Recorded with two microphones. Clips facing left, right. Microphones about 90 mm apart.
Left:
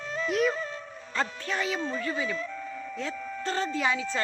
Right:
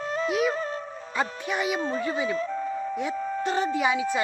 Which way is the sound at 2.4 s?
40° right (ahead or behind).